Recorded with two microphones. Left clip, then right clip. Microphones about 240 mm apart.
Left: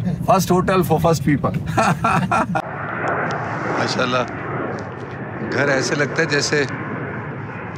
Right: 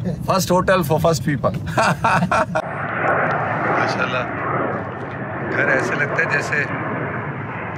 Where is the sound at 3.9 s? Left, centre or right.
Left.